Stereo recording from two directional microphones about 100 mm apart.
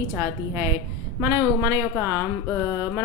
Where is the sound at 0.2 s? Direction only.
25° right (ahead or behind).